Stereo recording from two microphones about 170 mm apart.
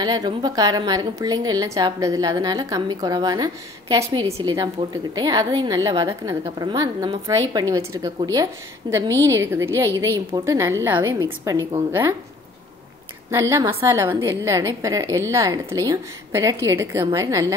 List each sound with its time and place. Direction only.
0.0 s a woman's voice: 25° right (ahead or behind)
13.3 s a woman's voice: 15° right (ahead or behind)